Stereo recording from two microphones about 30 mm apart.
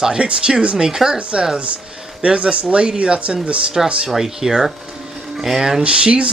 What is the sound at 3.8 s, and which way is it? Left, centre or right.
Speech, centre.